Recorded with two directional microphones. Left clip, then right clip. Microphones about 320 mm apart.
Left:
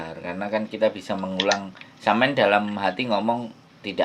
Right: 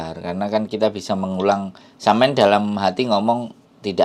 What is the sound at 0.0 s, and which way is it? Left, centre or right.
Speech, right.